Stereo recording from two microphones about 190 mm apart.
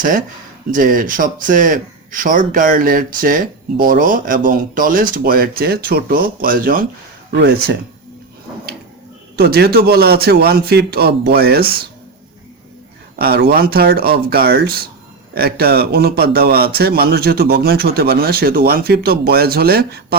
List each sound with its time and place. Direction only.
0.7 s speech: 45° right (ahead or behind)
7.3 s a man's voice: 60° right (ahead or behind)
9.3 s a man's voice: 55° right (ahead or behind)
13.1 s a man's voice: 55° right (ahead or behind)